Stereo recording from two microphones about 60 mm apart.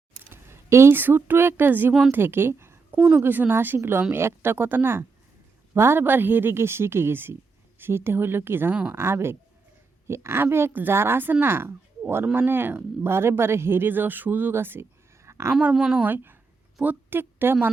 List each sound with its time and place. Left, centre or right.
0.2 s a sound: right
0.9 s speech: right
1.9 s a woman's voice: centre
2.1 s speech: right
3.2 s speech: right
8.7 s speech: right
9.0 s speech: right
10.7 s speech: right
10.9 s speech: right
15.7 s a woman's voice: centre
16.0 s a woman's voice: right